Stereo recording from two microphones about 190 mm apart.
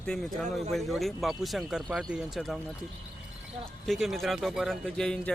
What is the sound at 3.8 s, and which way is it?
Speech, centre (ahead or behind).